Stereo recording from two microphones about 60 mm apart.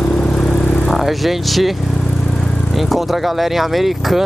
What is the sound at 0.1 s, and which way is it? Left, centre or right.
Vehicle, centre.